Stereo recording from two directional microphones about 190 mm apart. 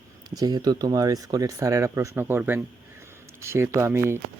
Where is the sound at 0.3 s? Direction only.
20° right (ahead or behind).